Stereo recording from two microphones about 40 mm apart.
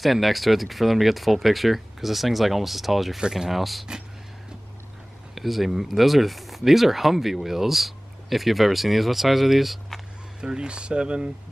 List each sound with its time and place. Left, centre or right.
0.0 s speech: centre
3.2 s speech: centre
5.3 s speech: centre
10.4 s speech: right